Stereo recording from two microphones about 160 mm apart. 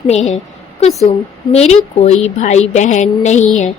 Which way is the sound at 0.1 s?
45° left (ahead or behind).